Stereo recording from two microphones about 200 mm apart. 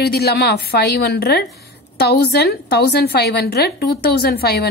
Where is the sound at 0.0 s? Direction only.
55° left (ahead or behind).